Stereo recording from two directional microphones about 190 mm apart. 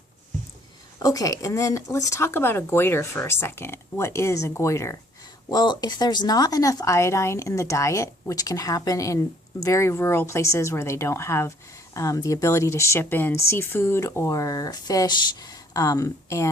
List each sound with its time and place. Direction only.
0.9 s speech: 20° left (ahead or behind)